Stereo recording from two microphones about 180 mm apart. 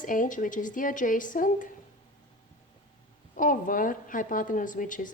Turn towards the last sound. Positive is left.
turn(degrees=45)  # may be behind; listen again after turning